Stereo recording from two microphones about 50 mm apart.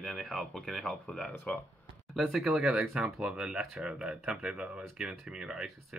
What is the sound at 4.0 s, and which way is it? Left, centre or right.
Speech, centre.